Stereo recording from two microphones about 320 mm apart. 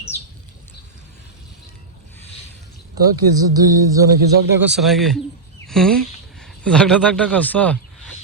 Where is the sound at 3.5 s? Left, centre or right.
Centre.